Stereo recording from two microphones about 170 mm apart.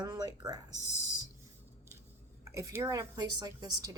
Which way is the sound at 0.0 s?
25° right (ahead or behind).